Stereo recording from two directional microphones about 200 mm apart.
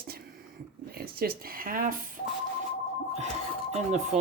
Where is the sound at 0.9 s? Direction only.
50° right (ahead or behind).